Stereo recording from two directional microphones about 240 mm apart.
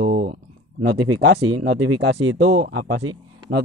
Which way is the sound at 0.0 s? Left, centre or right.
Right.